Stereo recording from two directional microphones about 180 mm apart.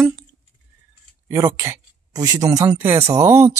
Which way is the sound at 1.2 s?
15° right (ahead or behind).